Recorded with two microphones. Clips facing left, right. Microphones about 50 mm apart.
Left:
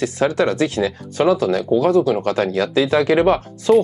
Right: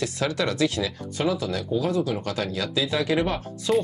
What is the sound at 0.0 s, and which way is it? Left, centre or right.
Speech, left.